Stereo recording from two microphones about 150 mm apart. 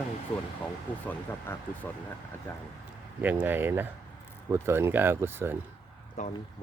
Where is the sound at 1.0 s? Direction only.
15° left (ahead or behind).